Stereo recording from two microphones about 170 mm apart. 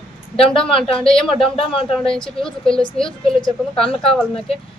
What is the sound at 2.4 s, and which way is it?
Speech, 5° left (ahead or behind).